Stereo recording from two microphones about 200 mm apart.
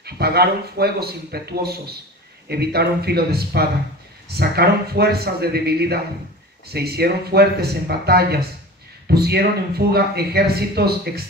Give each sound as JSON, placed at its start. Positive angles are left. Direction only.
{"t": 0.0, "sound": "speech", "side_deg": -55}